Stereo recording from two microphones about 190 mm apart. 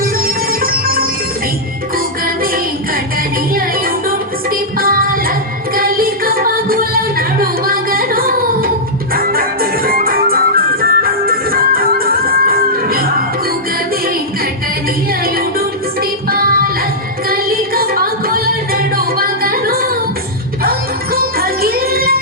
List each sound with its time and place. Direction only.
0.0 s music: 50° right (ahead or behind)
3.5 s music: 50° right (ahead or behind)
15.2 s music: 50° right (ahead or behind)